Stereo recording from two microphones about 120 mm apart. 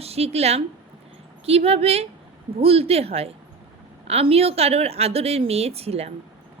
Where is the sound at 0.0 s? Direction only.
55° right (ahead or behind).